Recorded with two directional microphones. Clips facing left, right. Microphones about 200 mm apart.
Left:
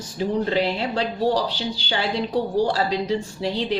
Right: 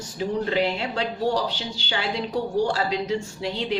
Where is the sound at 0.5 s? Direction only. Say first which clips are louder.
Left 2 dB; 35° left (ahead or behind).